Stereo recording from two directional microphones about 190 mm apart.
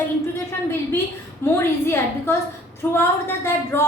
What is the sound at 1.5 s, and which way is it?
A woman's voice, 15° left (ahead or behind).